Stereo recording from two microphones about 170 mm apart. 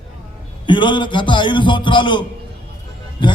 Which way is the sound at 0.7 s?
25° left (ahead or behind).